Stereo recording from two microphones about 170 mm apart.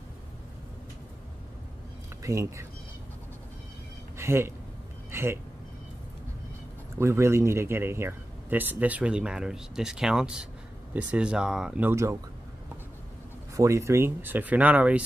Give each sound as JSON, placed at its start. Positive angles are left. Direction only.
{"t": 2.2, "sound": "speech", "side_deg": -20}
{"t": 4.2, "sound": "speech", "side_deg": -15}
{"t": 7.0, "sound": "speech", "side_deg": -15}
{"t": 13.6, "sound": "speech", "side_deg": -15}